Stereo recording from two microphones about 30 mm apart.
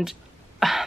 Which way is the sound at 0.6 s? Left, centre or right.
Centre.